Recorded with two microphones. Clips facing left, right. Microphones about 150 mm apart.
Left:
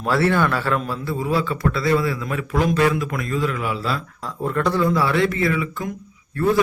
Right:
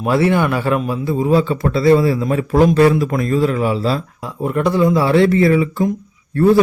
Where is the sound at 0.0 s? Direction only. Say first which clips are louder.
Right 4 dB; 15° right (ahead or behind).